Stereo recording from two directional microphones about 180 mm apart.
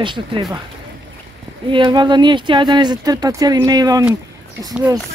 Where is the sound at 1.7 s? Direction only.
25° right (ahead or behind).